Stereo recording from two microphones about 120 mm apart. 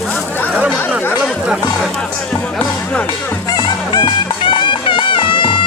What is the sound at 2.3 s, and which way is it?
Music, 10° left (ahead or behind).